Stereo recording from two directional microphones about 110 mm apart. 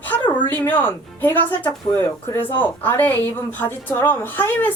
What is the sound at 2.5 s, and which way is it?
A woman's voice, 15° left (ahead or behind).